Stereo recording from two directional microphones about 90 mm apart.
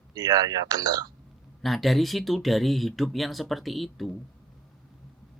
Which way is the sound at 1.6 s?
Centre (ahead or behind).